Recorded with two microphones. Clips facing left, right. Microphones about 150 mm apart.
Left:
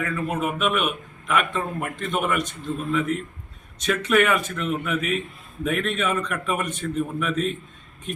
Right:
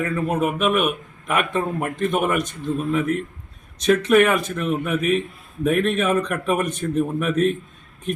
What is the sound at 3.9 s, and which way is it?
A man's voice, 40° right (ahead or behind).